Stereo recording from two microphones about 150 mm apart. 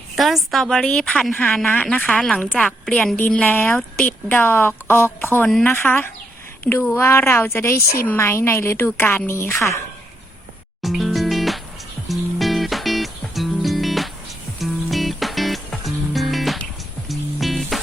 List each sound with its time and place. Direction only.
0.2 s a woman's voice: centre (ahead or behind)
5.5 s a woman's voice: 5° left (ahead or behind)
5.7 s a woman's voice: 15° left (ahead or behind)
10.8 s music: centre (ahead or behind)